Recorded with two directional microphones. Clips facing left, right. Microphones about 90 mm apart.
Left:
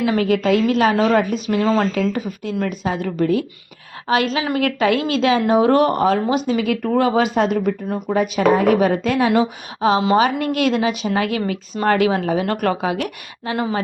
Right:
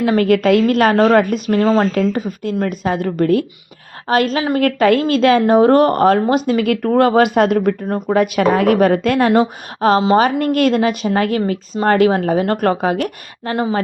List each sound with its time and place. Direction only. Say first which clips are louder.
0.0 s a woman's voice: right 4 dB; 50° right (ahead or behind)
1.5 s a woman's voice: right 4 dB; 35° right (ahead or behind); by 7.9 s 55° right (ahead or behind)
8.1 s a woman's voice: right 2 dB; 65° right (ahead or behind); by 13.6 s 45° right (ahead or behind)